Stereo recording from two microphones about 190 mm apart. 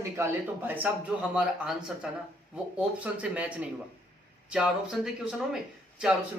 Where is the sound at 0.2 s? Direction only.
10° right (ahead or behind).